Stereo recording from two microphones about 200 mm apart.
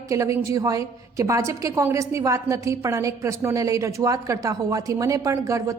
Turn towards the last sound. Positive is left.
turn(degrees=-15)  # may be behind; listen again after turning